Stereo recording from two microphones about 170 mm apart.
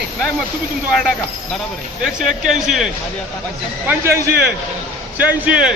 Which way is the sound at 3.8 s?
15° right (ahead or behind).